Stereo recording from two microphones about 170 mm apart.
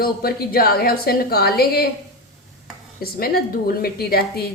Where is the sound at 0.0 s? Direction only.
65° left (ahead or behind).